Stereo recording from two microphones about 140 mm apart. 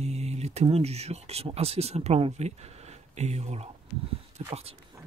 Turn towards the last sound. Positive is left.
turn(degrees=-45)  # may be behind; listen again after turning